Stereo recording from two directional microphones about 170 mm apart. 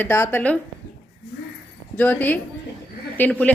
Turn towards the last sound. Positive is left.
turn(degrees=10)  # may be behind; listen again after turning